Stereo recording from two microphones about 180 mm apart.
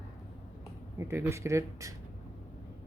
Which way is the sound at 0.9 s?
15° right (ahead or behind).